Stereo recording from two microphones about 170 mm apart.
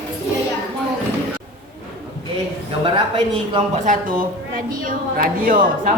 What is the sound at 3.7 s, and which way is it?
A woman's voice, 45° right (ahead or behind).